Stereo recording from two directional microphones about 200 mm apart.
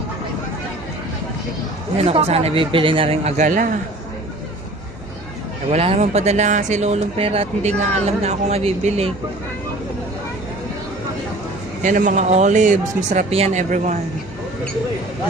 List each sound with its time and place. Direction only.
2.0 s speech: 30° right (ahead or behind)
5.6 s speech: 30° right (ahead or behind)
11.8 s speech: 40° right (ahead or behind)